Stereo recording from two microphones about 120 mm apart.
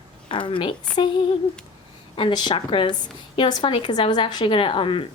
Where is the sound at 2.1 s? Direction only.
40° left (ahead or behind).